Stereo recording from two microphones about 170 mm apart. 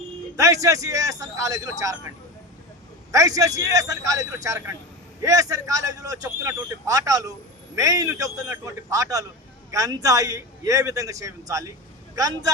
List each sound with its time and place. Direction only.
0.3 s speech: 20° right (ahead or behind)